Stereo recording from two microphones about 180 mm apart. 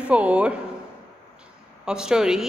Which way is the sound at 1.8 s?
5° right (ahead or behind).